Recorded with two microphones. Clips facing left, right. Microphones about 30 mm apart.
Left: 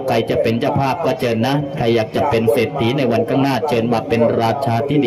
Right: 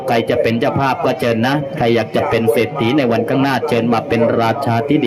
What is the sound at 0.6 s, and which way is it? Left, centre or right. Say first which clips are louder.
A man's voice: right 2 dB; centre.